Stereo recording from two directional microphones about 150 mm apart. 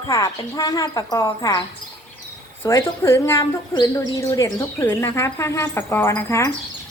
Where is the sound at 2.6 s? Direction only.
15° left (ahead or behind).